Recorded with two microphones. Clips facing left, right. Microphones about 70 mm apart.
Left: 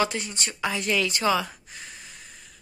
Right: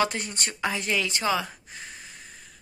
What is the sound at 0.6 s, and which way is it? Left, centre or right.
Speech, right.